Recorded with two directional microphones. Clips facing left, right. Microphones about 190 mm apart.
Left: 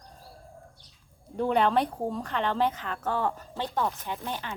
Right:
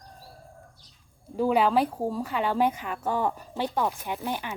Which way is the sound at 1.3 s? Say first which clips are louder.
Right 2 dB; 5° right (ahead or behind).